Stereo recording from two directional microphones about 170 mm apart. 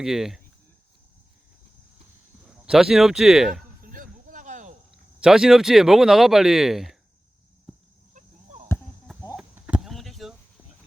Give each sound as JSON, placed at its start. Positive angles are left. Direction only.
{"t": 0.0, "sound": "speech", "side_deg": 0}
{"t": 2.6, "sound": "speech", "side_deg": -5}
{"t": 3.5, "sound": "a sound", "side_deg": -55}
{"t": 5.2, "sound": "speech", "side_deg": -5}
{"t": 8.1, "sound": "chop", "side_deg": -45}
{"t": 9.3, "sound": "a sound", "side_deg": -5}